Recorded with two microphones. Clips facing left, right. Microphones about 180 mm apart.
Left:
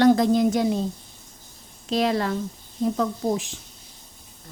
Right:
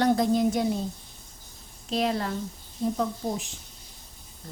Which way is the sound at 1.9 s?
90° left.